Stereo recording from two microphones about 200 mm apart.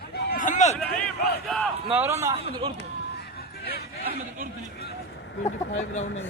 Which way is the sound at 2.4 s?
30° right (ahead or behind).